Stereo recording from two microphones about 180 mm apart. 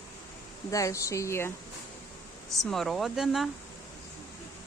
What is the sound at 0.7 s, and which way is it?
Speech, 20° left (ahead or behind).